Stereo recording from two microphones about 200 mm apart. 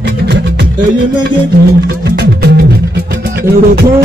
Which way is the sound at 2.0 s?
55° right (ahead or behind).